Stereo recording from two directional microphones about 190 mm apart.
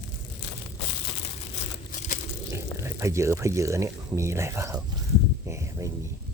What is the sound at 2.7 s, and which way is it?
Speech, 15° right (ahead or behind).